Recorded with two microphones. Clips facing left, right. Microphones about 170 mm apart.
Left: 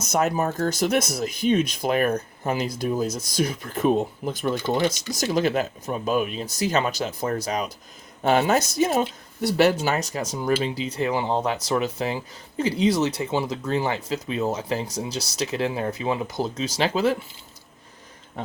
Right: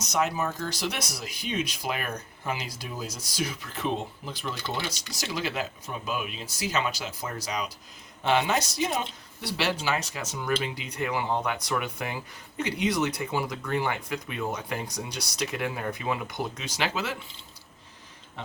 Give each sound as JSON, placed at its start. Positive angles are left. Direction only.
{"t": 0.0, "sound": "speech", "side_deg": 50}